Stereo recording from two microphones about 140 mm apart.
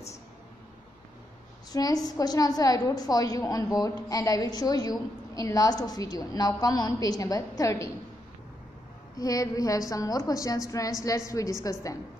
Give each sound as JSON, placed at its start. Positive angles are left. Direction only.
{"t": 1.7, "sound": "a woman's voice", "side_deg": 25}
{"t": 9.2, "sound": "a woman's voice", "side_deg": 25}